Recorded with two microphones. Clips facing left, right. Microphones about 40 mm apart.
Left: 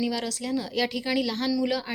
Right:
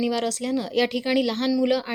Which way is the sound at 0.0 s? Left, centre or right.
Right.